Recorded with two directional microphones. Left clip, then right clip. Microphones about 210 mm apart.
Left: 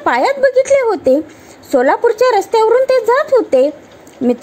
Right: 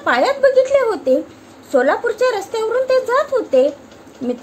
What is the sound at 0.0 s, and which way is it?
A woman's voice, 35° left (ahead or behind).